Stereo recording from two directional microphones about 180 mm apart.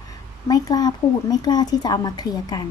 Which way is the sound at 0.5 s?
20° left (ahead or behind).